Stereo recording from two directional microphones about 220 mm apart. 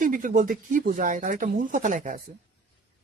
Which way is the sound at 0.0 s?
35° right (ahead or behind).